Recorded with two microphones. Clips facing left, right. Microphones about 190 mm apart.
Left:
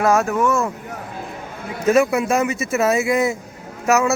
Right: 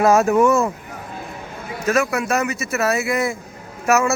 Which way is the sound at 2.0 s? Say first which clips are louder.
Left 3 dB; 25° left (ahead or behind).